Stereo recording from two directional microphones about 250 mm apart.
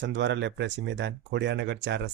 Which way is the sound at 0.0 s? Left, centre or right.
Right.